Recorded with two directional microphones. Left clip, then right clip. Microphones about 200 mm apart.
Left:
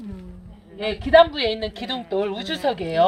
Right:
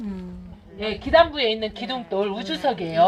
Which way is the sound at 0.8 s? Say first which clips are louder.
Left 2 dB; 50° left (ahead or behind).